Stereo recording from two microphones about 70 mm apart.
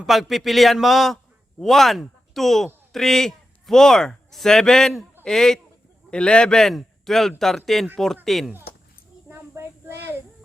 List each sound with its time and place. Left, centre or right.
0.0 s a man's voice: centre
9.3 s child singing: right